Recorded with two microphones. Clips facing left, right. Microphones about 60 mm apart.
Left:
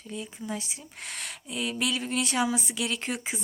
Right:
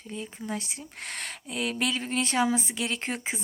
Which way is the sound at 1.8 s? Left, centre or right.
Right.